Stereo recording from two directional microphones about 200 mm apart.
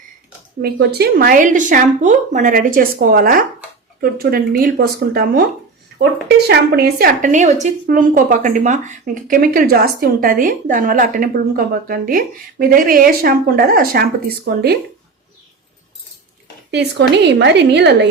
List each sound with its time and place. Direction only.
0.6 s a woman's voice: 50° right (ahead or behind)
16.7 s a woman's voice: 60° right (ahead or behind)